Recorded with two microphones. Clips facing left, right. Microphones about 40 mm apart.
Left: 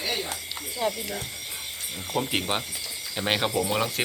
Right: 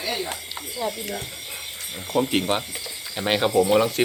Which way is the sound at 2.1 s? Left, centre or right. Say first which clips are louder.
Right 5 dB; centre.